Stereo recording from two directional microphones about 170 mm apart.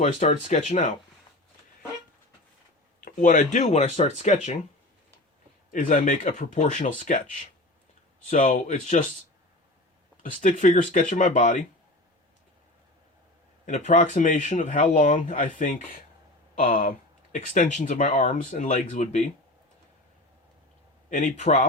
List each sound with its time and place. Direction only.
0.0 s speech: 45° left (ahead or behind)
3.0 s speech: 50° left (ahead or behind)
5.7 s speech: 50° left (ahead or behind)
8.3 s speech: 45° left (ahead or behind)
10.4 s speech: 50° left (ahead or behind)
13.7 s speech: 40° left (ahead or behind)
21.1 s speech: 45° left (ahead or behind)